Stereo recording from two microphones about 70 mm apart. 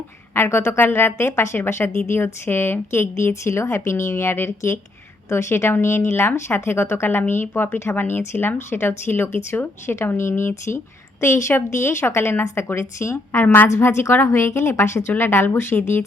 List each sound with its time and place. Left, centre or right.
0.3 s a woman's voice: left
13.4 s a woman's voice: left
13.7 s a woman's voice: left